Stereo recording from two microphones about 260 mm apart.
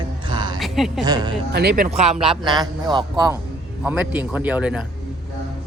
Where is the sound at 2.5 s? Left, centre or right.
Centre.